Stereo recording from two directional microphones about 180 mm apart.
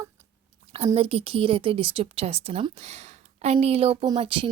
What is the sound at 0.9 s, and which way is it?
Speech, 30° right (ahead or behind).